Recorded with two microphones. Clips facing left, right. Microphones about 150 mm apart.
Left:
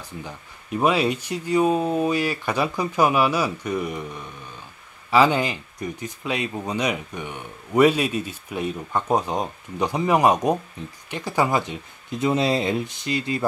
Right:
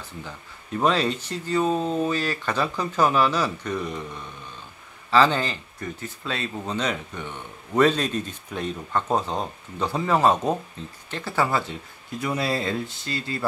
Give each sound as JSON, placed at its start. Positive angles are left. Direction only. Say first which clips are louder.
{"t": 0.2, "sound": "speech", "louder": "left 2 dB", "side_deg": 15}